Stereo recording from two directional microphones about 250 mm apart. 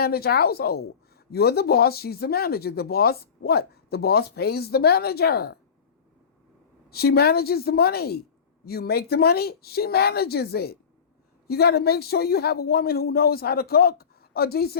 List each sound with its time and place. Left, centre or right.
0.0 s speech: left
6.9 s speech: left